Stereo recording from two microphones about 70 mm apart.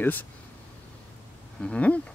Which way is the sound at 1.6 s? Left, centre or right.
Centre.